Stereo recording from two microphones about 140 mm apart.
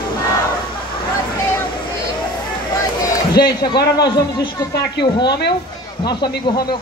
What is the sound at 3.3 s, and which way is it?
Speech, 30° left (ahead or behind).